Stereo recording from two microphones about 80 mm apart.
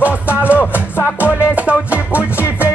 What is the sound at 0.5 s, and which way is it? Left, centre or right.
Music, left.